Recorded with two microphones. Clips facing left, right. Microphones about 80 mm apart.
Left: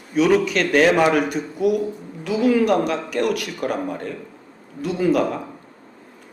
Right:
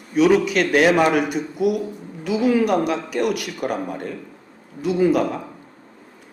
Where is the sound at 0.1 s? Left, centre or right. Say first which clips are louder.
Right 1 dB; centre.